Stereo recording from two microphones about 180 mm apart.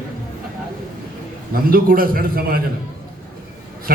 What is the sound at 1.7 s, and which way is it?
Speech, 55° right (ahead or behind).